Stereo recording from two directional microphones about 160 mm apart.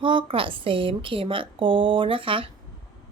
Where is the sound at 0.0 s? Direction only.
30° right (ahead or behind).